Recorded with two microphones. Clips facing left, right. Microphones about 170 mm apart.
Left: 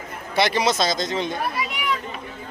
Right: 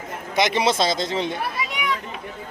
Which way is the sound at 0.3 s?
20° right (ahead or behind).